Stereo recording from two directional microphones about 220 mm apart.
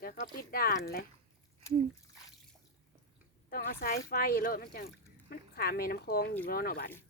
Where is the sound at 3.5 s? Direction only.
40° left (ahead or behind).